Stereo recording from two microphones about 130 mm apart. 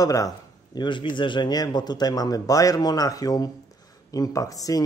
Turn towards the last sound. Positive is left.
turn(degrees=25)  # may be behind; listen again after turning